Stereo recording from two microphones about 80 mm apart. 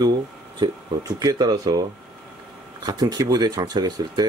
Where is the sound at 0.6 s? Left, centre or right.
Right.